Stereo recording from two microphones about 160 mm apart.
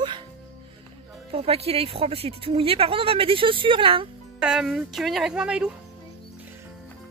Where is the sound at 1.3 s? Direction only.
40° right (ahead or behind).